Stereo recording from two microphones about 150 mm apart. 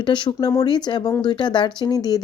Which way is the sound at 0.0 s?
30° left (ahead or behind).